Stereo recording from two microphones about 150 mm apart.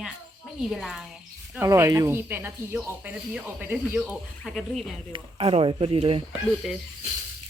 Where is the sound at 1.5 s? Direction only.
15° right (ahead or behind).